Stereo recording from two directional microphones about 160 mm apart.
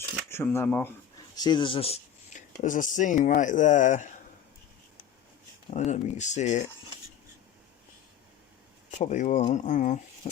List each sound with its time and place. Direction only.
0.3 s speech: 15° left (ahead or behind)
1.4 s speech: 30° left (ahead or behind)
2.6 s speech: 55° left (ahead or behind)
5.7 s speech: 45° left (ahead or behind)
8.9 s speech: 50° left (ahead or behind)